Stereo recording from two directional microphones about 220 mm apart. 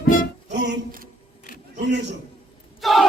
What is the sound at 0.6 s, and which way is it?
Music, 50° right (ahead or behind).